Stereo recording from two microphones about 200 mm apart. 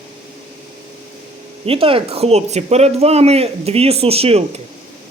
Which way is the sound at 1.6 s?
30° right (ahead or behind).